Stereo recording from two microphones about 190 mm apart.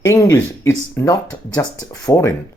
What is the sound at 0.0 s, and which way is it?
A man's voice, 15° left (ahead or behind).